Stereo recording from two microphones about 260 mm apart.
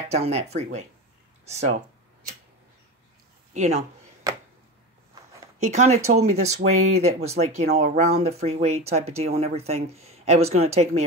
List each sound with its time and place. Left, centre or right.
0.1 s speech: right
3.5 s speech: right
4.2 s chopping: centre
5.6 s speech: right